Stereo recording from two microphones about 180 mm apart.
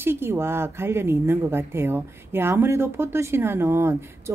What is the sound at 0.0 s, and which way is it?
Speech, 15° right (ahead or behind).